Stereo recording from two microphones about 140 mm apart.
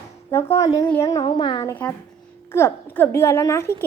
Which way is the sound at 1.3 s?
30° left (ahead or behind).